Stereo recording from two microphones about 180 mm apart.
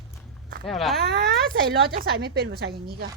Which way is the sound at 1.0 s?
60° right (ahead or behind).